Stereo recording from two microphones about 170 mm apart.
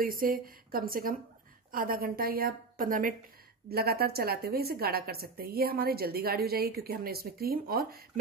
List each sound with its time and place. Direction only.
0.0 s a woman's voice: 55° right (ahead or behind)
3.6 s a woman's voice: 65° right (ahead or behind)